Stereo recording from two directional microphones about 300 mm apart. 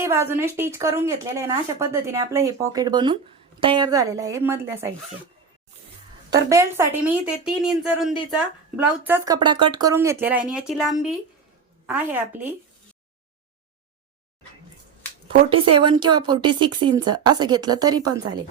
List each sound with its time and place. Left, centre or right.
0.0 s speech: centre
6.3 s a woman's voice: centre
15.4 s speech: centre